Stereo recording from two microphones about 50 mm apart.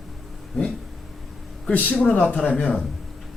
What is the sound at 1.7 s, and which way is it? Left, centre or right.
Speech, left.